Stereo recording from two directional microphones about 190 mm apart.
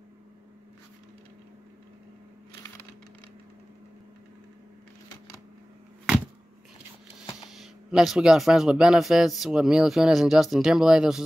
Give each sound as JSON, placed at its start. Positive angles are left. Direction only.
{"t": 7.4, "sound": "speech", "side_deg": 0}